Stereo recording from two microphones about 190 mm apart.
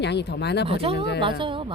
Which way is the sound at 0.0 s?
65° left (ahead or behind).